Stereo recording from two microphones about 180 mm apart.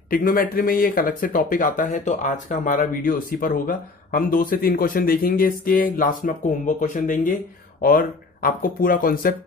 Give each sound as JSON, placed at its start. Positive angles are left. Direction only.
{"t": 0.1, "sound": "speech", "side_deg": 50}